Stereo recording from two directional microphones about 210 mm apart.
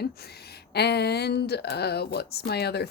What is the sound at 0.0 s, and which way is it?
A woman's voice, 50° left (ahead or behind).